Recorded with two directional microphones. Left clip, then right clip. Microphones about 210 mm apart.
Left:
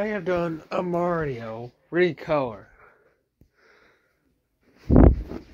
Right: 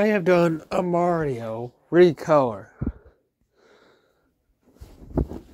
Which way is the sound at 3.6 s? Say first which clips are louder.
Right 2 dB; 55° right (ahead or behind).